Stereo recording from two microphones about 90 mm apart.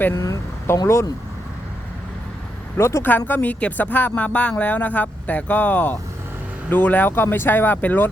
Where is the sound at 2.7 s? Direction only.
30° left (ahead or behind).